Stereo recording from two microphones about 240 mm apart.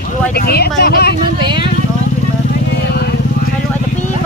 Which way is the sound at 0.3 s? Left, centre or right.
Left.